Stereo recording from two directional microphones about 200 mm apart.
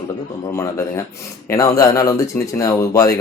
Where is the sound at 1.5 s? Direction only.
15° left (ahead or behind).